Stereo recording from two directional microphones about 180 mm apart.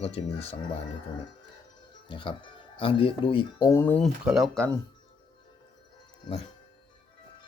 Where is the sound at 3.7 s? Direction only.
10° left (ahead or behind).